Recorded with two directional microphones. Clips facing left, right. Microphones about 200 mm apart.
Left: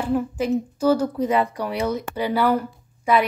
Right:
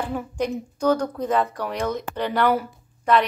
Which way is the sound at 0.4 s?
5° left (ahead or behind).